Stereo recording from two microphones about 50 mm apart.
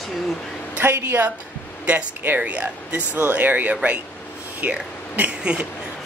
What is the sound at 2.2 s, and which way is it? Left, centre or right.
Speech, right.